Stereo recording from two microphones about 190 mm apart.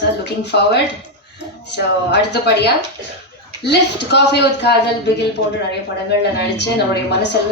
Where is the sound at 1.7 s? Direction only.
65° left (ahead or behind).